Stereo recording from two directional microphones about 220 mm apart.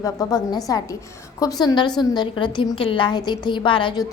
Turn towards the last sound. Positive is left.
turn(degrees=20)  # may be behind; listen again after turning